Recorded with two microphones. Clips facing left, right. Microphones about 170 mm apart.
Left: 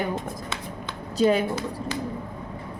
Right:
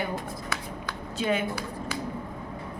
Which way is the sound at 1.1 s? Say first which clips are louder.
Left 7 dB; 40° left (ahead or behind).